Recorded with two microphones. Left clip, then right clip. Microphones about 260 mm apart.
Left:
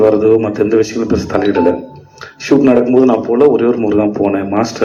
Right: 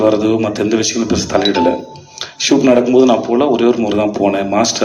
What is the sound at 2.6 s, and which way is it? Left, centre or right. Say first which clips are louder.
Speech: even; right.